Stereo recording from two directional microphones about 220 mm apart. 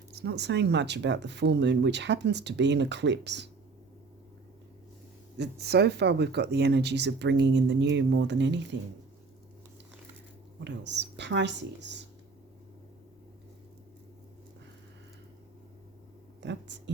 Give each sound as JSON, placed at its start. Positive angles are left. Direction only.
{"t": 0.1, "sound": "speech", "side_deg": -50}
{"t": 5.4, "sound": "speech", "side_deg": -50}
{"t": 10.6, "sound": "speech", "side_deg": -50}
{"t": 16.4, "sound": "a sound", "side_deg": -55}